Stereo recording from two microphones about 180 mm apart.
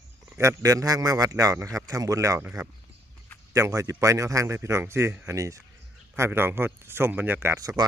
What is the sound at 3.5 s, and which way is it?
A man's voice, 15° right (ahead or behind).